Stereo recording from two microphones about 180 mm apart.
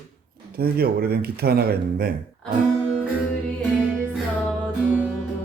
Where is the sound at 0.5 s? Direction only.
60° right (ahead or behind).